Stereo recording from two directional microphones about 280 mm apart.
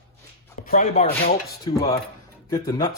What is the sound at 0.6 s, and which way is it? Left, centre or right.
Chopping, left.